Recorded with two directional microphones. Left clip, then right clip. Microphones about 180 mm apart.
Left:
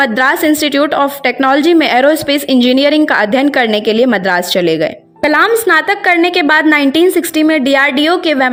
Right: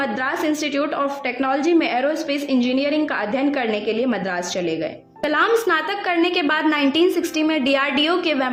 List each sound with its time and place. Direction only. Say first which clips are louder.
0.0 s a woman's voice: left 11 dB; 40° left (ahead or behind)